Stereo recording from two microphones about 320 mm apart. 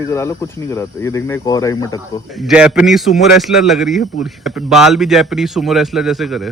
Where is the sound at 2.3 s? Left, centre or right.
Centre.